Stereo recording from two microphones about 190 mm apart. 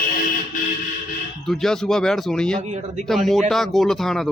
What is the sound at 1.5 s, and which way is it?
Speech, centre (ahead or behind).